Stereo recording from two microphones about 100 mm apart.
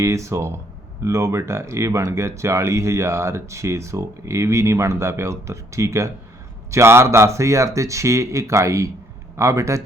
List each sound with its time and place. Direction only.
0.0 s speech: 30° right (ahead or behind)